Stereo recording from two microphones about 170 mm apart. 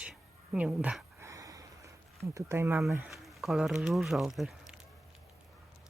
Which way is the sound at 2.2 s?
15° right (ahead or behind).